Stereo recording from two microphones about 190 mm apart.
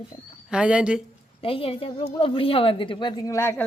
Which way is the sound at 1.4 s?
30° left (ahead or behind).